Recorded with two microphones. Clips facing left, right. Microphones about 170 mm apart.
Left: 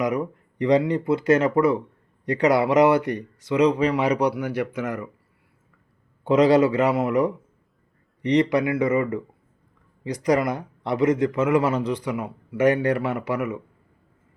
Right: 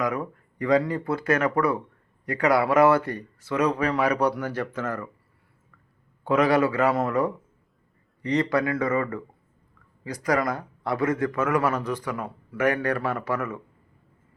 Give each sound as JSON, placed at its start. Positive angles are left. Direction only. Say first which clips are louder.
{"t": 0.0, "sound": "speech", "louder": "left 3 dB", "side_deg": 20}
{"t": 6.2, "sound": "speech", "louder": "left 4 dB", "side_deg": 25}